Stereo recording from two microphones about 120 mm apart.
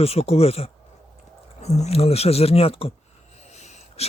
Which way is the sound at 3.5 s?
70° left (ahead or behind).